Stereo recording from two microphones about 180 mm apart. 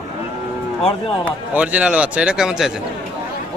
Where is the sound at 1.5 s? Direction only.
5° right (ahead or behind).